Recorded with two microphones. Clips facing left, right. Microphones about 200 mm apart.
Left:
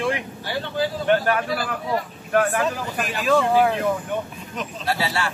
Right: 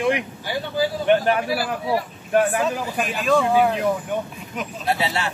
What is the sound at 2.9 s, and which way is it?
Speech, centre (ahead or behind).